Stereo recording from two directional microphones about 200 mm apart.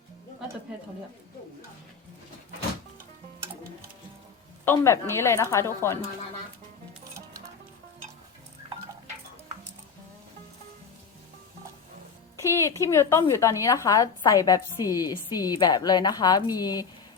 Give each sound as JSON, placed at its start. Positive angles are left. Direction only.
{"t": 4.6, "sound": "a woman's voice", "side_deg": 10}
{"t": 12.4, "sound": "a woman's voice", "side_deg": 15}